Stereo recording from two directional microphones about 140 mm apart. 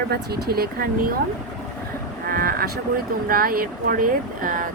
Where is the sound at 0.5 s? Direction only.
90° right.